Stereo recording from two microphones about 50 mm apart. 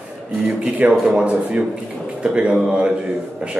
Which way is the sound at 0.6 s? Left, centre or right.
Right.